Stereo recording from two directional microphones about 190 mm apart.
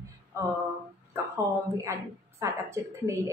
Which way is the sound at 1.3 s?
15° right (ahead or behind).